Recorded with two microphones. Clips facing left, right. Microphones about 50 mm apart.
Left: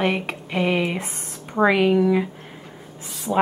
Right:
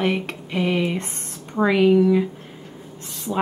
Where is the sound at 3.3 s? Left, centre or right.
Left.